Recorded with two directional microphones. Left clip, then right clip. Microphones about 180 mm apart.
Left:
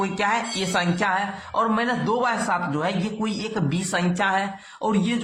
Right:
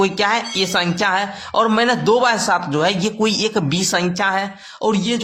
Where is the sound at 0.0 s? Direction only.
25° right (ahead or behind).